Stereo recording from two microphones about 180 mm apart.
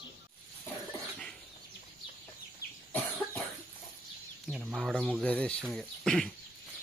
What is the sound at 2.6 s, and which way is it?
Cough, 55° left (ahead or behind).